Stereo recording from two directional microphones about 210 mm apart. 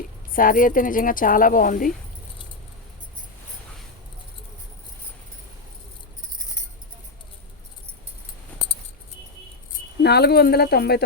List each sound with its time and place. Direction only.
0.3 s a woman's voice: 40° left (ahead or behind)
10.0 s speech: 50° left (ahead or behind)